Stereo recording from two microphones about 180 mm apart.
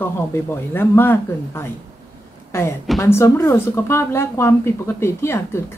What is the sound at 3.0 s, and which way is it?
Speech, 15° left (ahead or behind).